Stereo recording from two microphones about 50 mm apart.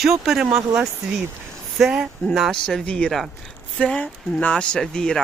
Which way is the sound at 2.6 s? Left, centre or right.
Centre.